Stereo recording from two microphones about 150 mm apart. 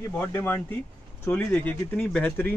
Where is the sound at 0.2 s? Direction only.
15° left (ahead or behind).